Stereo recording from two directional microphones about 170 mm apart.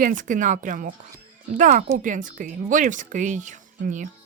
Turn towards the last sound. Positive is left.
turn(degrees=-45)  # may be behind; listen again after turning